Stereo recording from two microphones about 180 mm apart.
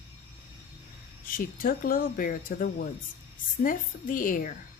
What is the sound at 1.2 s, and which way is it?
Speech, 50° left (ahead or behind).